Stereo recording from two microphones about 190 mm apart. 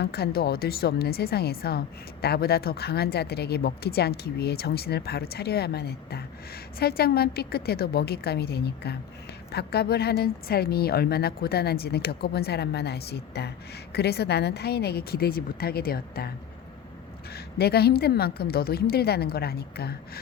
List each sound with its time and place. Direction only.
0.0 s a woman's voice: 55° left (ahead or behind)
17.3 s a woman's voice: 55° left (ahead or behind)